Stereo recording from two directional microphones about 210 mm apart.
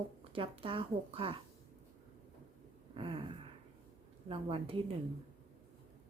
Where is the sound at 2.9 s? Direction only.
25° right (ahead or behind).